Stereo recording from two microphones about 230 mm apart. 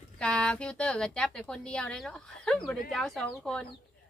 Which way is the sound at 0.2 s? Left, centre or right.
Centre.